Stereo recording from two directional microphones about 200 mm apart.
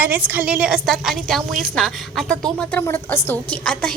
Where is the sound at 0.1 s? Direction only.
10° right (ahead or behind).